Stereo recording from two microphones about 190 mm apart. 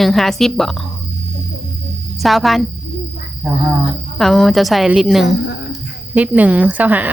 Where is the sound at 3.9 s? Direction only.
Centre (ahead or behind).